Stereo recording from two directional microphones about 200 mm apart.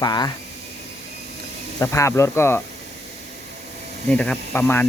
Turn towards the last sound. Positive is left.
turn(degrees=10)  # may be behind; listen again after turning